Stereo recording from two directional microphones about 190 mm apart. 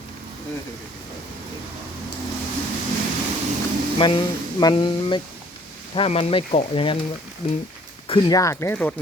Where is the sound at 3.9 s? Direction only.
25° left (ahead or behind).